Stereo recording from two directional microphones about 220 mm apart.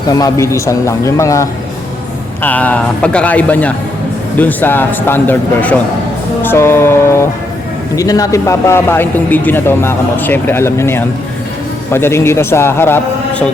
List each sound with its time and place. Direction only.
0.1 s speech: 15° left (ahead or behind)
6.4 s music: 10° left (ahead or behind)
7.9 s speech: 15° left (ahead or behind)